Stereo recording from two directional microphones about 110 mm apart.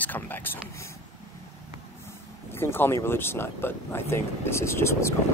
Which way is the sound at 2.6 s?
20° left (ahead or behind).